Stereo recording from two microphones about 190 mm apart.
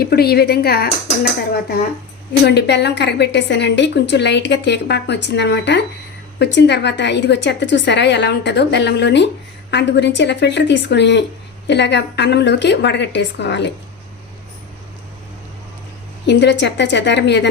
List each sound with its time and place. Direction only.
0.0 s a woman's voice: 55° left (ahead or behind)
16.2 s a woman's voice: 65° left (ahead or behind)